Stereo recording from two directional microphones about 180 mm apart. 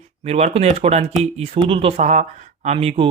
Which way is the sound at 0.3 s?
35° right (ahead or behind).